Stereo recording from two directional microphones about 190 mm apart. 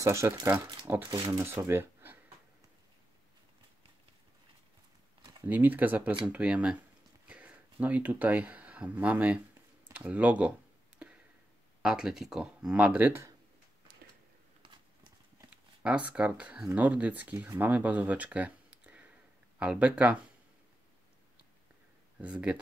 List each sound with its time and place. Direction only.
0.0 s speech: 15° right (ahead or behind)
1.1 s speech: 20° right (ahead or behind)
1.4 s a sound: 15° right (ahead or behind)
5.4 s speech: 10° right (ahead or behind)
11.0 s a sound: 5° right (ahead or behind)
11.8 s speech: 5° right (ahead or behind)
15.3 s speech: 5° right (ahead or behind)
22.2 s speech: 5° right (ahead or behind)